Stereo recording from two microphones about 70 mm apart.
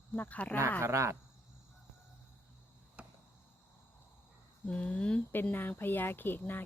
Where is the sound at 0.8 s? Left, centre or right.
Right.